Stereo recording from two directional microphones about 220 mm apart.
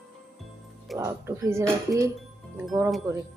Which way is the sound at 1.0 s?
15° right (ahead or behind).